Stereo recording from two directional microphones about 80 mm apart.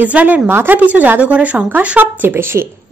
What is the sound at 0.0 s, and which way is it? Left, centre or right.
Speech, centre.